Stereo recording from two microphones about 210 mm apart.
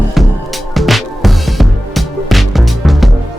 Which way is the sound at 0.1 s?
Centre (ahead or behind).